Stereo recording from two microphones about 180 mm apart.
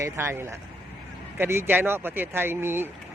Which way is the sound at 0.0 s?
15° right (ahead or behind).